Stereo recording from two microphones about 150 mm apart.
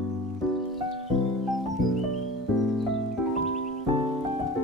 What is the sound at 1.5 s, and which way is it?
Music, centre (ahead or behind).